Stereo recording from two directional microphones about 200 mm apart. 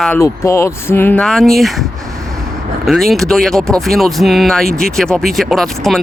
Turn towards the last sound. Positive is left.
turn(degrees=0)  # may be behind; listen again after turning